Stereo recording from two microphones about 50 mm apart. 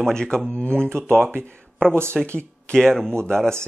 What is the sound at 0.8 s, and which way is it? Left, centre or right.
Speech, right.